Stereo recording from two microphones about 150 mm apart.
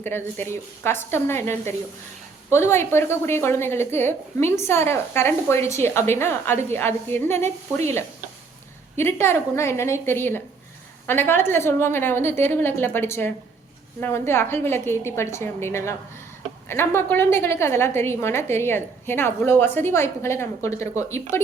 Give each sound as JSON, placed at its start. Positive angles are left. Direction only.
{"t": 0.0, "sound": "a woman's voice", "side_deg": 15}
{"t": 2.5, "sound": "a woman's voice", "side_deg": 15}
{"t": 9.0, "sound": "a woman's voice", "side_deg": 15}